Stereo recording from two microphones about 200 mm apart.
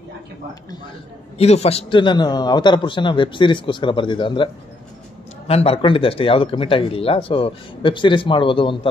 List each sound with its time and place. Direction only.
1.4 s speech: 30° left (ahead or behind)
5.5 s speech: 30° left (ahead or behind)